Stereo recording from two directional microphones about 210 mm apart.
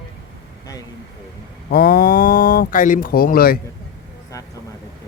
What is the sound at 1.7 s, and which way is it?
Speech, 45° left (ahead or behind).